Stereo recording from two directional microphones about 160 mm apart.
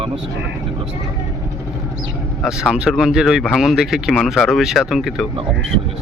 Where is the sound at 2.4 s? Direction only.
5° right (ahead or behind).